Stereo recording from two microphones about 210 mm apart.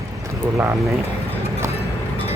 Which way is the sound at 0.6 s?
15° right (ahead or behind).